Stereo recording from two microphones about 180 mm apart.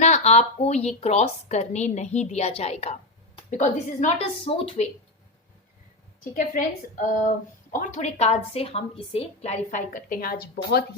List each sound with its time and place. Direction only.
0.0 s a woman's voice: 40° left (ahead or behind)
6.5 s a woman's voice: 45° left (ahead or behind)